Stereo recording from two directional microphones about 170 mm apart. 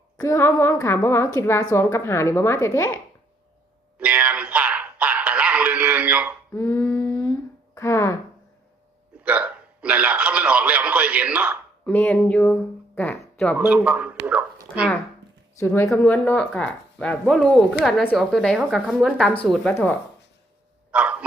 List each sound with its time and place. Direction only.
0.2 s a woman's voice: 15° left (ahead or behind)
3.9 s a sound: 5° right (ahead or behind)
6.5 s a sound: 15° left (ahead or behind)
7.8 s a woman's voice: 15° left (ahead or behind)
9.2 s hiccup: 5° right (ahead or behind)
12.2 s speech: 10° left (ahead or behind)
13.6 s speech: 5° right (ahead or behind)
15.5 s a woman's voice: 15° left (ahead or behind); by 19.3 s 5° right (ahead or behind)
19.5 s a woman's voice: 10° left (ahead or behind)
20.9 s a sound: 5° right (ahead or behind)